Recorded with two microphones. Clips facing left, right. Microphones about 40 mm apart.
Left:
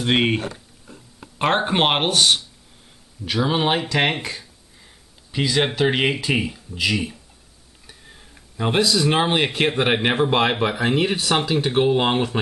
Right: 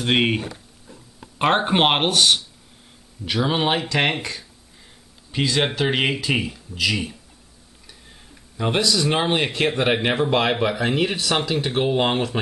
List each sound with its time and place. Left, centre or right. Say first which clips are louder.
0.0 s speech: even; centre
1.4 s speech: right 1 dB; centre
5.3 s speech: left 1 dB; centre
8.5 s speech: left 2 dB; centre
8.9 s speech: left 2 dB; centre